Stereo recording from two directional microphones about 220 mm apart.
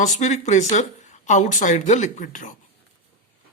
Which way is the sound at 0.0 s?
30° left (ahead or behind).